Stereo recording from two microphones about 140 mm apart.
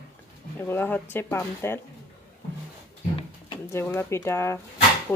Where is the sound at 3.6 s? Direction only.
15° left (ahead or behind).